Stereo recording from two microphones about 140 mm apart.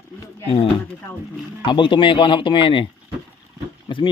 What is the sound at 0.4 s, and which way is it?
Speech, 40° left (ahead or behind).